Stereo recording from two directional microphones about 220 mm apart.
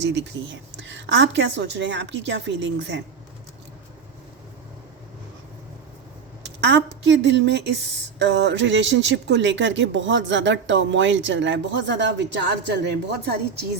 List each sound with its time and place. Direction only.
0.0 s speech: 55° right (ahead or behind)
6.4 s speech: 55° right (ahead or behind)